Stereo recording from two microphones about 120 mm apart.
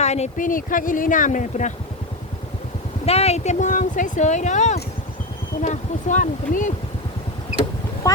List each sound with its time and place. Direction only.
0.0 s speech: 65° left (ahead or behind); by 1.7 s 90° left
3.1 s speech: 60° left (ahead or behind); by 6.7 s 90° left